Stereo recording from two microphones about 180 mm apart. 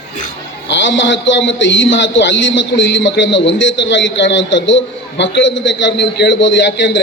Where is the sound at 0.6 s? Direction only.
85° left.